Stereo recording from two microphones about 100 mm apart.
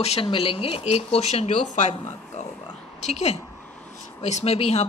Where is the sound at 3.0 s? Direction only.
90° left.